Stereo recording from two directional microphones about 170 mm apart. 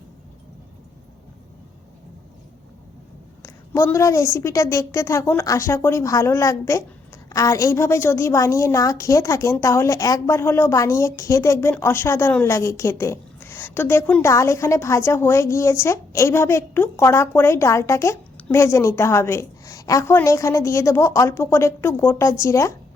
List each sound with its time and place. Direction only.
3.4 s a woman's voice: 15° left (ahead or behind)